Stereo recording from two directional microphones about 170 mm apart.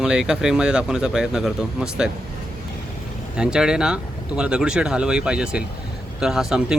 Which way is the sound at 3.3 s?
5° right (ahead or behind).